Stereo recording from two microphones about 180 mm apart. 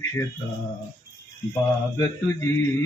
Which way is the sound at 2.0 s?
15° left (ahead or behind).